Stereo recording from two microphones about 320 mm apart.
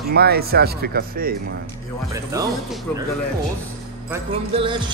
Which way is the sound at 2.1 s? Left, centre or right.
Centre.